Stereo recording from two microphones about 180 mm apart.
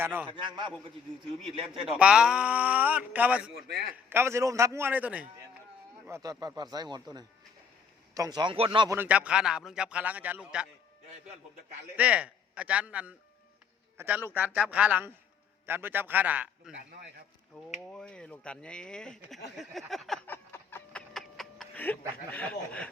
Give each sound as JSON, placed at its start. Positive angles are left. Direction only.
{"t": 0.0, "sound": "a man's voice", "side_deg": -10}
{"t": 0.3, "sound": "speech", "side_deg": -25}
{"t": 1.9, "sound": "a man's voice", "side_deg": -5}
{"t": 6.1, "sound": "speech", "side_deg": -20}
{"t": 8.9, "sound": "a man's voice", "side_deg": -10}
{"t": 11.9, "sound": "a man's voice", "side_deg": -5}
{"t": 17.7, "sound": "speech", "side_deg": 5}
{"t": 19.5, "sound": "a sound", "side_deg": 0}
{"t": 21.1, "sound": "a sound", "side_deg": 5}